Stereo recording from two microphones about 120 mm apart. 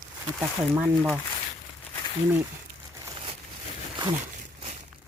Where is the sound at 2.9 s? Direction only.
30° right (ahead or behind).